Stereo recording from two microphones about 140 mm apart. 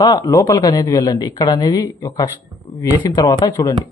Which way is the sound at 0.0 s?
25° left (ahead or behind).